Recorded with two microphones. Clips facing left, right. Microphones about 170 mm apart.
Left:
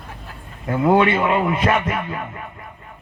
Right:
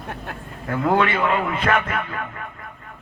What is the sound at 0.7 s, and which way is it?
A man's voice, 15° left (ahead or behind).